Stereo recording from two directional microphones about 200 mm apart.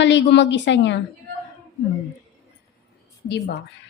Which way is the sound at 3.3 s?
60° left (ahead or behind).